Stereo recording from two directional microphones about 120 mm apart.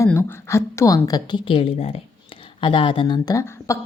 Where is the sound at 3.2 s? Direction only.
25° left (ahead or behind).